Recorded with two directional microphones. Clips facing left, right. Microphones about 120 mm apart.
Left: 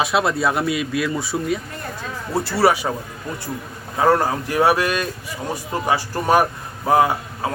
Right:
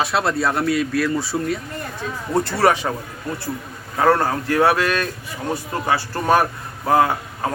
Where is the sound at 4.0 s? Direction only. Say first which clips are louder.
Even; 10° left (ahead or behind).